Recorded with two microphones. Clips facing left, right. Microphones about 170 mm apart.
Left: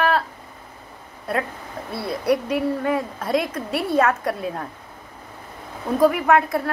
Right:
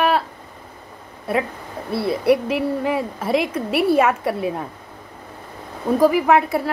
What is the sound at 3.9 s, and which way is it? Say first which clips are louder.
Speech: right 2 dB; 10° right (ahead or behind).